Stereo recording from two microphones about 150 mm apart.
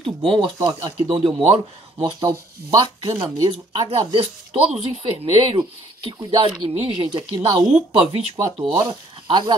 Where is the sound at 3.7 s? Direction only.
40° right (ahead or behind).